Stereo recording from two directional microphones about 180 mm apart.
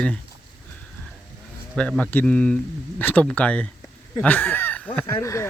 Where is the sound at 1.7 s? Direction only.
5° left (ahead or behind).